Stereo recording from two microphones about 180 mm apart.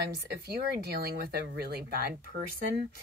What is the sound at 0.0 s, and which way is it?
Speech, 65° right (ahead or behind).